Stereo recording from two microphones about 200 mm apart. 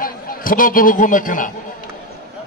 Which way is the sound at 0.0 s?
45° left (ahead or behind).